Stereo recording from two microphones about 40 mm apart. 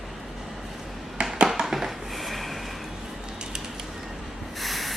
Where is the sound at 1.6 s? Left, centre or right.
Centre.